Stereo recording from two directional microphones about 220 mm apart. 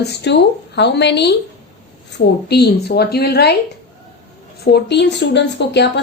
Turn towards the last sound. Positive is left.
turn(degrees=50)  # may be behind; listen again after turning